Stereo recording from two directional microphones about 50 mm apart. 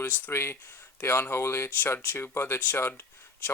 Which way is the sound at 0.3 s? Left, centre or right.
Left.